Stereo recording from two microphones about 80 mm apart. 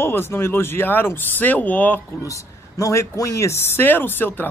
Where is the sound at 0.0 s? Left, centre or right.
Left.